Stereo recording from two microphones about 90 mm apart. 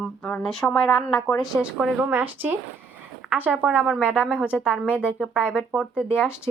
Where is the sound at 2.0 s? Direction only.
20° right (ahead or behind).